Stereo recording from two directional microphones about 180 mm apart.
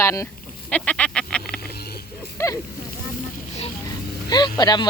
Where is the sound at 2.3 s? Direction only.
15° left (ahead or behind).